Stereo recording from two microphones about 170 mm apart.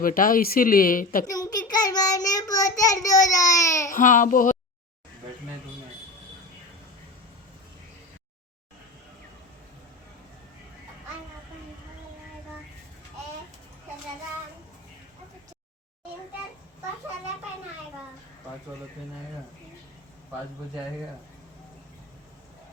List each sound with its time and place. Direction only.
0.0 s speech: 55° left (ahead or behind)
1.3 s child singing: 20° left (ahead or behind)
3.9 s speech: 50° left (ahead or behind)